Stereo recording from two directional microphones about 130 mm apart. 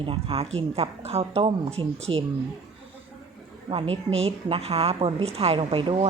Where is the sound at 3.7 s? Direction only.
50° right (ahead or behind).